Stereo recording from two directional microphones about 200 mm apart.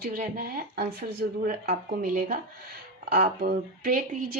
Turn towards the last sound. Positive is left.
turn(degrees=-45)  # may be behind; listen again after turning